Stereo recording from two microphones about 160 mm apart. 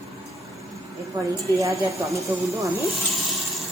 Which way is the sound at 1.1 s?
20° right (ahead or behind).